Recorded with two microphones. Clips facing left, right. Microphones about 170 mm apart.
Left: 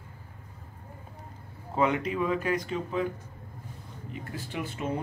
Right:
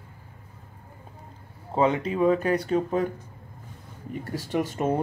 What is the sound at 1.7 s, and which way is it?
Speech, 30° right (ahead or behind).